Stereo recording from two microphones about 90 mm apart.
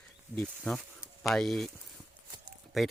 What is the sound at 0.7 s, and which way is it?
Speech, 15° left (ahead or behind).